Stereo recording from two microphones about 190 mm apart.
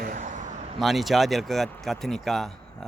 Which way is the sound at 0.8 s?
Centre (ahead or behind).